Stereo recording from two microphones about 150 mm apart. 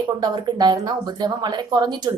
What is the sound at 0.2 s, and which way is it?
A woman's voice, 30° right (ahead or behind).